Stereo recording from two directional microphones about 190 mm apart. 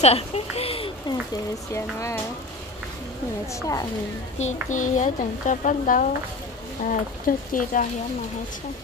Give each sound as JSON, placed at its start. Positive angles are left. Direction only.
{"t": 0.0, "sound": "a child's voice", "side_deg": 30}
{"t": 1.7, "sound": "music", "side_deg": 15}
{"t": 3.5, "sound": "music", "side_deg": 15}
{"t": 4.4, "sound": "a woman's voice", "side_deg": 40}